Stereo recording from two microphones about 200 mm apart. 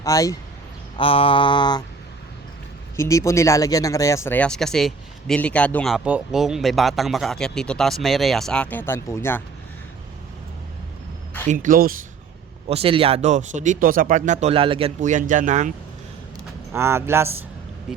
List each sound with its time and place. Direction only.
0.0 s speech: 15° left (ahead or behind)
0.9 s mantra: 25° left (ahead or behind)
2.9 s speech: 15° left (ahead or behind)
11.4 s speech: 40° right (ahead or behind)
12.6 s speech: 30° right (ahead or behind)
16.7 s a man's voice: 10° right (ahead or behind)